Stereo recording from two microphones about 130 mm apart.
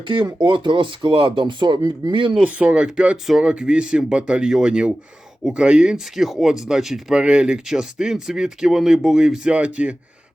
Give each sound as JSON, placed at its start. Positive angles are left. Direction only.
{"t": 0.0, "sound": "speech", "side_deg": -40}
{"t": 2.3, "sound": "speech", "side_deg": -10}